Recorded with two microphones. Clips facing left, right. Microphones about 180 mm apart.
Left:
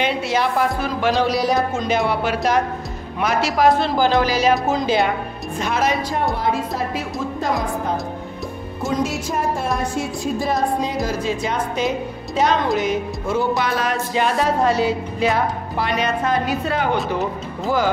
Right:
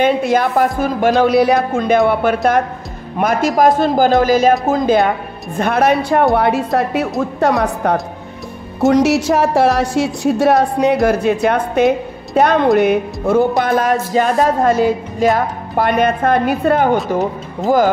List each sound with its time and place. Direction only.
0.0 s speech: 50° right (ahead or behind)